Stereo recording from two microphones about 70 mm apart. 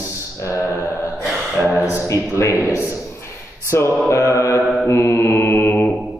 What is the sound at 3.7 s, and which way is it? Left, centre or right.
Mantra, left.